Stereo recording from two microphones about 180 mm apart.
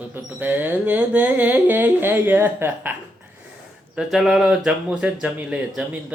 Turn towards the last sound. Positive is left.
turn(degrees=-5)  # may be behind; listen again after turning